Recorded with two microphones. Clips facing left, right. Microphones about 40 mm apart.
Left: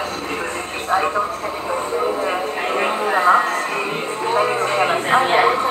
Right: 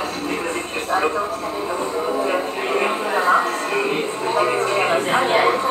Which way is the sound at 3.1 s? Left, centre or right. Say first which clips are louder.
Left 3 dB; left.